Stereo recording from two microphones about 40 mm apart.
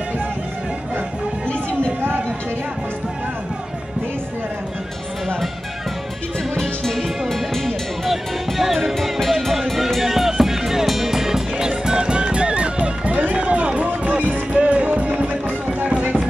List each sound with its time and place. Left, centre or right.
6.5 s music: centre; by 13.1 s right
13.3 s run: right
14.5 s music: right
15.2 s music: right